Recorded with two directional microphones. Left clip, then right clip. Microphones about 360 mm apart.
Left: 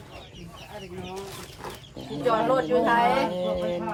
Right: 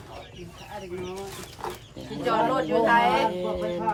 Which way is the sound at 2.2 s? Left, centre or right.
Centre.